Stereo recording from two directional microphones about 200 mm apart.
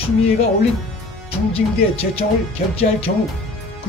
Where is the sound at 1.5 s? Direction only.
30° left (ahead or behind).